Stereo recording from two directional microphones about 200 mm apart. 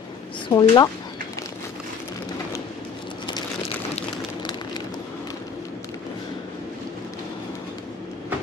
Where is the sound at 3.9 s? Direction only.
20° left (ahead or behind).